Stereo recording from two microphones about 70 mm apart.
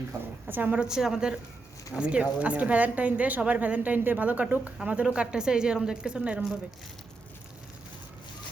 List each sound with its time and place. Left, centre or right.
0.4 s speech: right
0.8 s a woman's voice: centre